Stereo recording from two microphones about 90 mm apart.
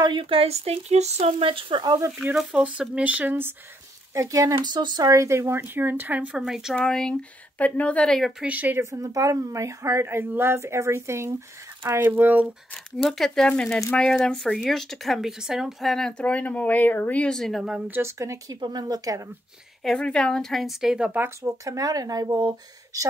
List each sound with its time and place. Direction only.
0.0 s a woman's voice: 65° right (ahead or behind); by 1.8 s 85° right
1.8 s speech: 45° right (ahead or behind)
2.3 s speech: 10° right (ahead or behind)
4.1 s a woman's voice: 35° right (ahead or behind)
5.1 s a woman's voice: 35° right (ahead or behind); by 6.7 s 5° right (ahead or behind)
6.7 s speech: 5° left (ahead or behind)
8.4 s speech: 15° right (ahead or behind)
8.9 s a woman's voice: 40° right (ahead or behind); by 12.4 s 20° right (ahead or behind)
12.7 s speech: 5° left (ahead or behind)
17.7 s a woman's voice: 20° right (ahead or behind)
18.1 s a woman's voice: 35° right (ahead or behind)
18.6 s speech: 50° right (ahead or behind)
19.8 s speech: 10° left (ahead or behind)
21.4 s a woman's voice: 40° right (ahead or behind)